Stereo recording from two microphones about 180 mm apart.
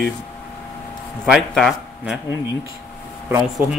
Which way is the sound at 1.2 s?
Centre (ahead or behind).